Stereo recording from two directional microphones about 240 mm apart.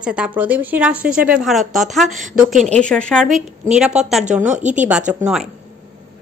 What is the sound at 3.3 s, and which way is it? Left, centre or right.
Speech, right.